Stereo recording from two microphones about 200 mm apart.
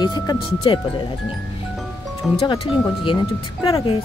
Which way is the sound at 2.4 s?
25° left (ahead or behind).